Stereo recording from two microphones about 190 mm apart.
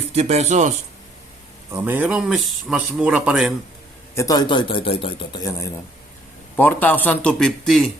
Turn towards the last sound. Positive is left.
turn(degrees=0)  # may be behind; listen again after turning